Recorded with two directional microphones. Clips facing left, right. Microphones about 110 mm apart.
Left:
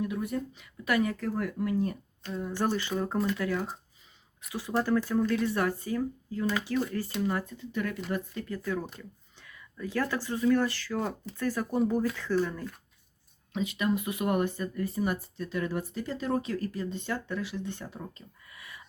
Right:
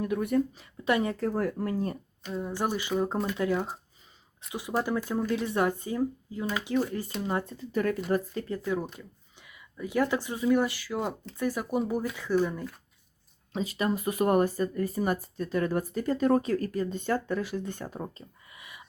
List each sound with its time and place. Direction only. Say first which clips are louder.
0.0 s speech: right 3 dB; 55° right (ahead or behind)
0.5 s speech: right 2 dB; 30° right (ahead or behind)
2.2 s speech: even; 10° right (ahead or behind); by 8.5 s 35° right (ahead or behind)
8.5 s speech: right 2 dB; 15° right (ahead or behind)
13.5 s speech: even; 35° right (ahead or behind)
18.5 s a sound: left 2 dB; 20° right (ahead or behind)